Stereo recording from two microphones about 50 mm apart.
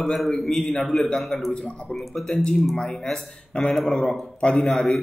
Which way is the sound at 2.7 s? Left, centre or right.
Centre.